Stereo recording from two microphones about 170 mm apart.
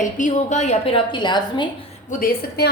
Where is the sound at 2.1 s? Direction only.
55° left (ahead or behind).